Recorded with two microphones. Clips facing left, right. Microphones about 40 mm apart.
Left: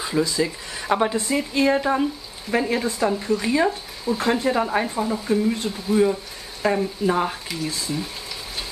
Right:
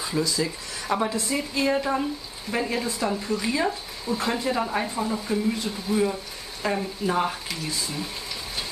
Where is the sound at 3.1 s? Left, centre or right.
Centre.